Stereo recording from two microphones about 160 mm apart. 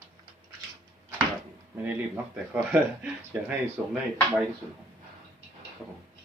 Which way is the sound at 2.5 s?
10° right (ahead or behind).